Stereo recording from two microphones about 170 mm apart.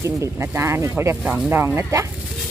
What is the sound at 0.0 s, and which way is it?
Speech, 15° right (ahead or behind).